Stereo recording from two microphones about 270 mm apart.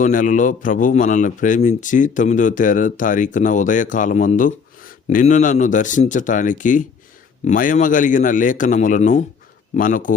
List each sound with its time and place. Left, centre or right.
0.0 s a man's voice: left